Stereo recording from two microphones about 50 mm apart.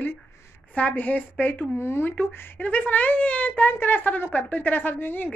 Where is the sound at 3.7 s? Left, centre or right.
Left.